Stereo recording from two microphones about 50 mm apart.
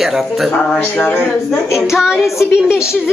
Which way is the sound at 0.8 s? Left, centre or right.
Left.